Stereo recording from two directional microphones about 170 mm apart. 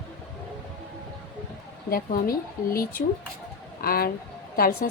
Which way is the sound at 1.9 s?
60° left (ahead or behind).